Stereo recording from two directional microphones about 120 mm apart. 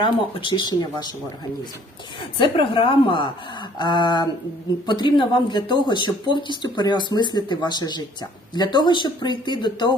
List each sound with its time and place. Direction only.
0.0 s speech: 40° left (ahead or behind)
2.4 s a woman's voice: 45° left (ahead or behind)